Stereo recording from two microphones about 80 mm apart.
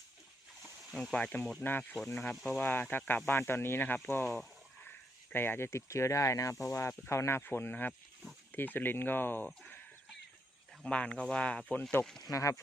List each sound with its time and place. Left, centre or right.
1.1 s speech: centre
1.6 s speech: left
2.3 s speech: centre
2.6 s speech: left
4.9 s speech: left
10.8 s speech: centre
12.3 s speech: left